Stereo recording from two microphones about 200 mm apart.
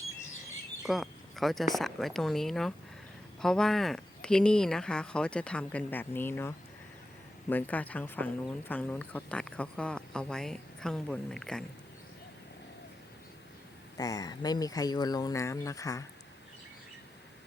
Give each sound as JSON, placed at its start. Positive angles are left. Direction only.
{"t": 0.9, "sound": "speech", "side_deg": 0}
{"t": 7.5, "sound": "speech", "side_deg": 10}
{"t": 13.9, "sound": "speech", "side_deg": 20}